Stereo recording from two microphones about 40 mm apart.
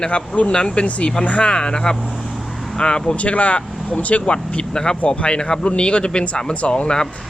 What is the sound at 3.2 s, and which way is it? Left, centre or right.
A man's voice, left.